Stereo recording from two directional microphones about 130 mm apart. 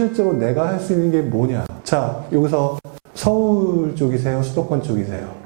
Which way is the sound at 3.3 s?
20° right (ahead or behind).